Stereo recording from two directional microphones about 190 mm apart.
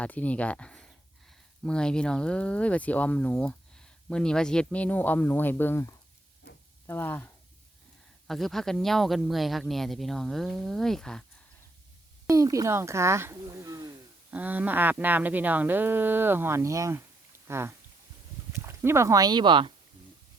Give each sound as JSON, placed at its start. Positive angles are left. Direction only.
{"t": 0.0, "sound": "speech", "side_deg": 5}
{"t": 8.3, "sound": "speech", "side_deg": 0}
{"t": 12.3, "sound": "speech", "side_deg": -15}